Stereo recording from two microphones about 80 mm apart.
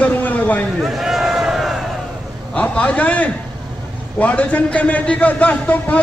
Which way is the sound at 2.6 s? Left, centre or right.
Centre.